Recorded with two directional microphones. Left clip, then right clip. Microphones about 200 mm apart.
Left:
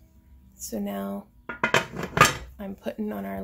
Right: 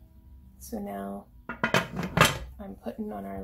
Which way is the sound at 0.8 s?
50° left (ahead or behind).